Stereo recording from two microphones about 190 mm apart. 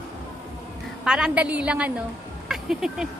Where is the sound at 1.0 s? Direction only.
5° right (ahead or behind).